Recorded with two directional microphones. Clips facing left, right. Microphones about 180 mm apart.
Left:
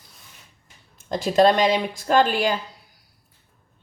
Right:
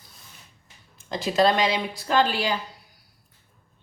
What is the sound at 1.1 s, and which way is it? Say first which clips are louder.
A woman's voice: left 4 dB; 45° left (ahead or behind).